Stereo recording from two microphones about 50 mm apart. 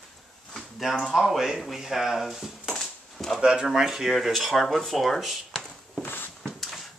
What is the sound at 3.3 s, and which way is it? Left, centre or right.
Speech, centre.